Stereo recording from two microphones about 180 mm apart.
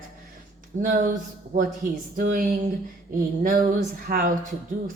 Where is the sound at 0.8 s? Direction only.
50° right (ahead or behind).